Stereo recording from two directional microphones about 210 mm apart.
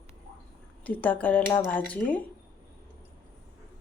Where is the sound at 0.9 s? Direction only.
5° left (ahead or behind).